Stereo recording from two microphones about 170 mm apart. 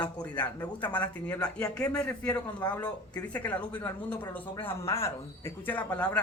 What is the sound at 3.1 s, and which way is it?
Speech, 10° left (ahead or behind).